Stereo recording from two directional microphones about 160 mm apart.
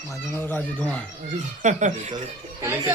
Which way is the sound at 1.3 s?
50° right (ahead or behind).